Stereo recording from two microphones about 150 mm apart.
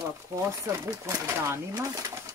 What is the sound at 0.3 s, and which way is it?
Speech, 20° right (ahead or behind).